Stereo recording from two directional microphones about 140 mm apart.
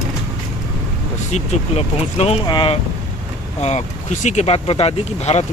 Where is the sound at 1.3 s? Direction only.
50° left (ahead or behind); by 2.7 s 35° left (ahead or behind).